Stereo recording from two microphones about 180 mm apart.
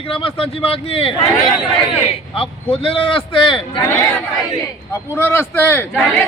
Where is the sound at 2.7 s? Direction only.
30° left (ahead or behind).